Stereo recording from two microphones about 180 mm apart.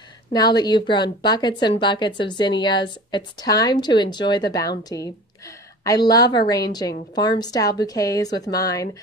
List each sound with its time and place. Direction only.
0.3 s a woman's voice: 25° left (ahead or behind)